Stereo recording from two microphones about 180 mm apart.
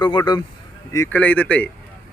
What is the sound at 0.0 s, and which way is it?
Speech, 25° left (ahead or behind).